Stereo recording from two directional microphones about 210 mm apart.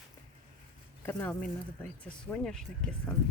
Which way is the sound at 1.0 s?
10° left (ahead or behind).